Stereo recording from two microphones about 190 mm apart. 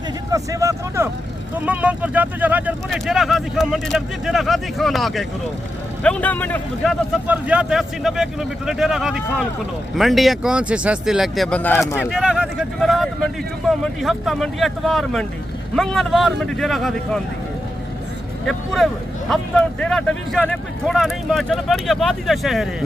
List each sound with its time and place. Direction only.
0.3 s speech: 15° right (ahead or behind); by 6.9 s 10° left (ahead or behind)
7.3 s speech: 5° right (ahead or behind)
11.9 s speech: 5° right (ahead or behind)
18.4 s speech: centre (ahead or behind)